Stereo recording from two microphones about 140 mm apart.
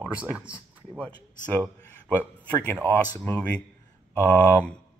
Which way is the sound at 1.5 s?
15° left (ahead or behind).